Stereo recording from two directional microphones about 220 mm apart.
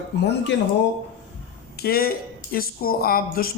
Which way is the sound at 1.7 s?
45° left (ahead or behind).